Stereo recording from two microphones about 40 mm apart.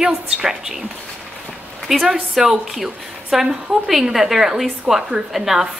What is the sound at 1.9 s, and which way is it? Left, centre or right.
A woman's voice, centre.